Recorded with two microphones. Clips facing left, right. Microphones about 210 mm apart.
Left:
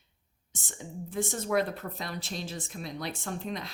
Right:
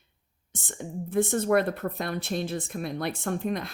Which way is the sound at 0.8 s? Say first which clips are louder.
Right 7 dB; 55° right (ahead or behind).